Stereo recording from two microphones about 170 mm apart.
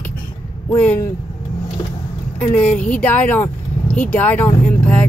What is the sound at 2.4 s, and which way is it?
Speech, 10° left (ahead or behind).